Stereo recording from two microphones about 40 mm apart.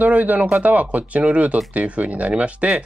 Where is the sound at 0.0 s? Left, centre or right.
Right.